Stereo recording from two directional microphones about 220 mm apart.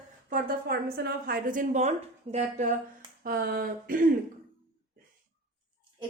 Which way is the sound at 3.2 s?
40° right (ahead or behind).